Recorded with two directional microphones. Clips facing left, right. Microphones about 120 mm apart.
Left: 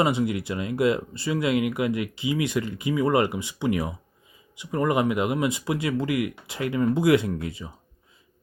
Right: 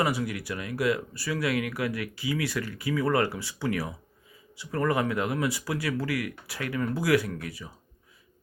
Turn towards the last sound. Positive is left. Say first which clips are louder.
# left 6 dB
turn(degrees=25)  # may be behind; listen again after turning